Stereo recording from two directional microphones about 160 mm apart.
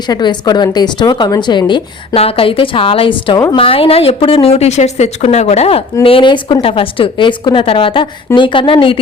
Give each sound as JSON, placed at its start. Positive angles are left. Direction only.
{"t": 0.1, "sound": "a woman's voice", "side_deg": 25}